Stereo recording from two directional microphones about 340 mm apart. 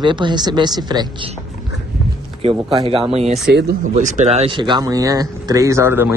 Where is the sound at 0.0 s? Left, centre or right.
Centre.